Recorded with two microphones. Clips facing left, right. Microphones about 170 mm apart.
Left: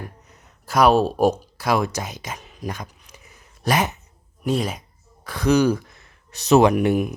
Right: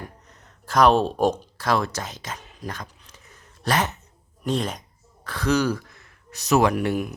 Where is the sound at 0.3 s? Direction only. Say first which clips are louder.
Left 1 dB; 10° left (ahead or behind).